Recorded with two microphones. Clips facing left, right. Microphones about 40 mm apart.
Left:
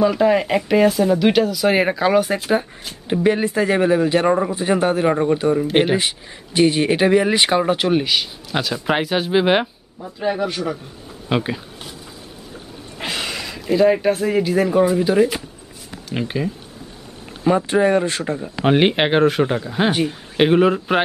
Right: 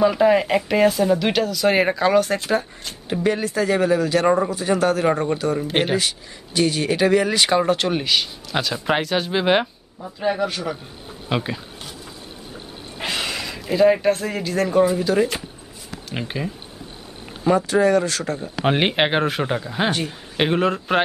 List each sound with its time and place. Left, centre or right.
0.0 s speech: centre; by 5.0 s left
5.0 s speech: centre
5.9 s speech: left
13.0 s speech: centre
17.6 s speech: left
18.7 s speech: centre